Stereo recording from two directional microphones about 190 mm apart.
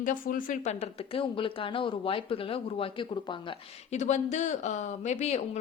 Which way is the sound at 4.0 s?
40° left (ahead or behind).